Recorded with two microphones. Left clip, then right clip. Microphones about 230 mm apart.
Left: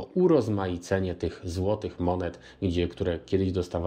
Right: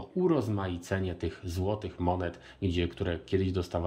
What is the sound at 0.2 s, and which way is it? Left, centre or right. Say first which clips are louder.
Speech: left 6 dB; centre.